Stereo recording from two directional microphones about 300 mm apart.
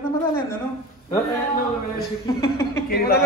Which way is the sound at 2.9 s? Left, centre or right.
Left.